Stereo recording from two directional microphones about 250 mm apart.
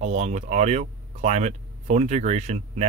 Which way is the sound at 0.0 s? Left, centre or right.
Right.